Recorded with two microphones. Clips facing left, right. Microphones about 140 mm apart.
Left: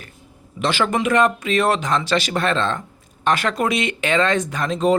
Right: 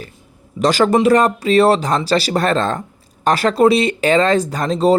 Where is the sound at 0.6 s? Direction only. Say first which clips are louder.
Right 7 dB; 40° right (ahead or behind).